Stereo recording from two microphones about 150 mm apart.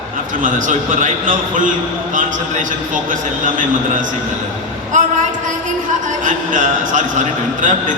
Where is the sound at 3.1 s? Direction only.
60° right (ahead or behind).